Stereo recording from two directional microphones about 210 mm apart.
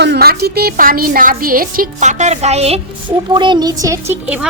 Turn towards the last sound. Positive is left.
turn(degrees=-10)  # may be behind; listen again after turning